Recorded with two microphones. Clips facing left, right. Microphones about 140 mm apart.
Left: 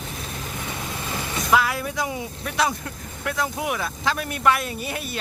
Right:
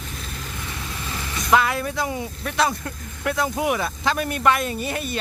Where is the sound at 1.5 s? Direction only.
5° left (ahead or behind).